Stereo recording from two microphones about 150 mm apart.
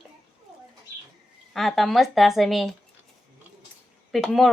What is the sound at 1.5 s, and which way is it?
Speech, centre (ahead or behind).